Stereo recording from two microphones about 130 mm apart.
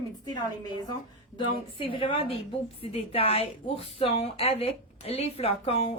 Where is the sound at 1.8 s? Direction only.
40° left (ahead or behind).